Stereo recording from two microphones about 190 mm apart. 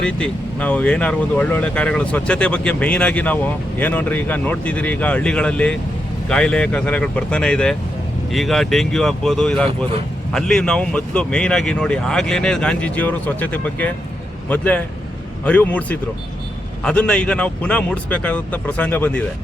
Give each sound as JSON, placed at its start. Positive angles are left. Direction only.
{"t": 0.0, "sound": "speech", "side_deg": 5}